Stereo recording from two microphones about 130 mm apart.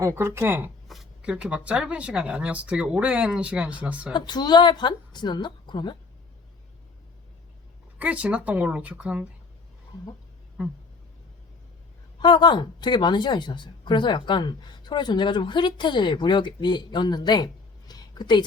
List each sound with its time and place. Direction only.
0.0 s speech: 20° right (ahead or behind)
0.9 s speech: 5° right (ahead or behind)
4.1 s a woman's voice: 35° left (ahead or behind)
7.9 s speech: 10° right (ahead or behind)
12.2 s a woman's voice: 35° left (ahead or behind)